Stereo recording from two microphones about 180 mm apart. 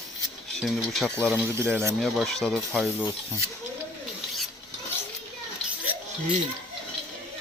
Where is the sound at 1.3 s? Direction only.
15° right (ahead or behind).